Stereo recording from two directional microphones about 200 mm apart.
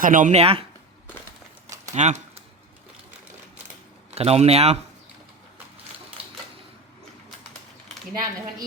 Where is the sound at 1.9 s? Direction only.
35° right (ahead or behind).